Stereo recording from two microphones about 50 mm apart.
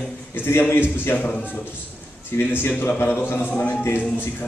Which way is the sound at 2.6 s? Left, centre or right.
Left.